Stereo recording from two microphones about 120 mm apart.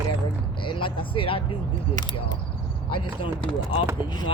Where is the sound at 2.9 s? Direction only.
45° left (ahead or behind).